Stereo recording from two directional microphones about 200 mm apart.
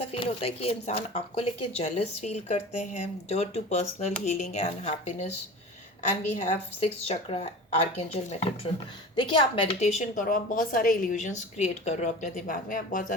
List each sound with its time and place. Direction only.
0.0 s speech: 30° left (ahead or behind)
6.3 s a woman's voice: 30° left (ahead or behind)
9.8 s speech: 35° left (ahead or behind)